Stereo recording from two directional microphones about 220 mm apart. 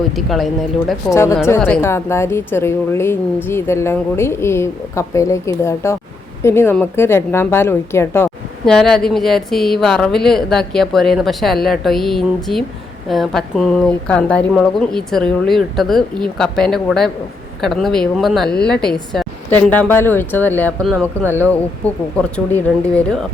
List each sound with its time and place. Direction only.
0.2 s a woman's voice: centre (ahead or behind)
1.1 s a woman's voice: 15° left (ahead or behind)
20.9 s speech: 10° right (ahead or behind)
21.8 s a woman's voice: 5° left (ahead or behind)